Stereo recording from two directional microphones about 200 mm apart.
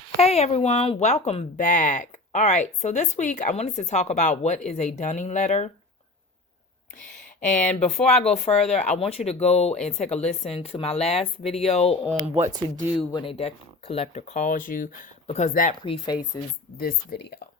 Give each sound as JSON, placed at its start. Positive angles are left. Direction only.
{"t": 0.2, "sound": "speech", "side_deg": 30}
{"t": 7.4, "sound": "speech", "side_deg": 35}
{"t": 12.4, "sound": "speech", "side_deg": -20}
{"t": 13.1, "sound": "speech", "side_deg": 30}
{"t": 15.8, "sound": "speech", "side_deg": 25}
{"t": 16.7, "sound": "speech", "side_deg": 50}